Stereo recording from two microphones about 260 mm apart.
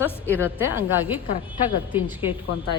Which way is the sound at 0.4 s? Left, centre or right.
Centre.